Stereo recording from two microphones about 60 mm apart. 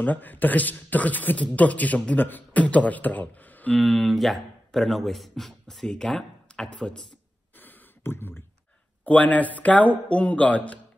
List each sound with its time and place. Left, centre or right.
0.0 s speech: left
3.8 s speech: centre
7.5 s a sound: left
9.0 s speech: left